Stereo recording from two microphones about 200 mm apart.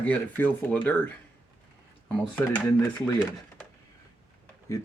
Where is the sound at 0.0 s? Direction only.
10° left (ahead or behind).